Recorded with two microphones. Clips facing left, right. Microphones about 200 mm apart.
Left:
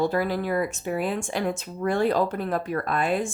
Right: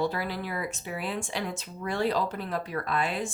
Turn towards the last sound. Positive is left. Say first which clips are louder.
# left 5 dB
turn(degrees=50)  # may be behind; listen again after turning